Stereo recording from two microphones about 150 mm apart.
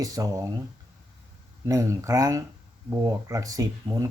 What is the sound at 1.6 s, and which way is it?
Speech, 20° right (ahead or behind).